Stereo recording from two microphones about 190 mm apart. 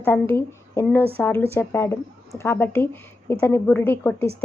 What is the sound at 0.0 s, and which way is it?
A woman's voice, 10° left (ahead or behind).